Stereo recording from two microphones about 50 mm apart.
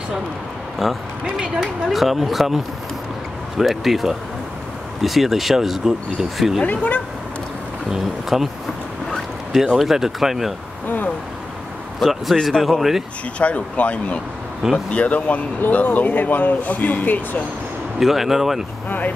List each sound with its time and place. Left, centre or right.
0.8 s speech: centre
6.6 s speech: left
7.9 s speech: centre
9.8 s speech: centre
12.0 s speech: centre
13.4 s speech: left
17.9 s speech: centre
18.9 s speech: left